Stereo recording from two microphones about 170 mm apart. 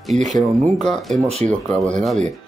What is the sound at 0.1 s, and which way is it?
Speech, 40° right (ahead or behind).